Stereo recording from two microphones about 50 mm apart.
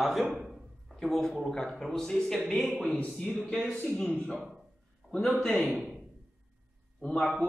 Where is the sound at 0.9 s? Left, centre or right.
Centre.